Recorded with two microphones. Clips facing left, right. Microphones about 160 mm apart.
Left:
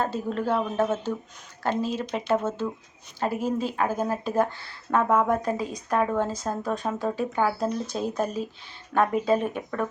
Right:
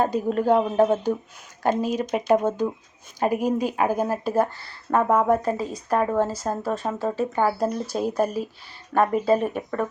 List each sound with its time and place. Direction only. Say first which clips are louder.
0.0 s speech: right 5 dB; 15° right (ahead or behind)